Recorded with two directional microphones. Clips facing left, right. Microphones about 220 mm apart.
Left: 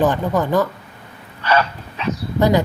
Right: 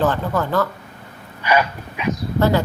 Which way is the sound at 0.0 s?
15° left (ahead or behind).